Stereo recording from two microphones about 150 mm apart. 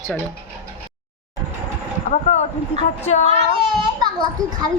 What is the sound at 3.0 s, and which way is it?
Speech, 50° left (ahead or behind).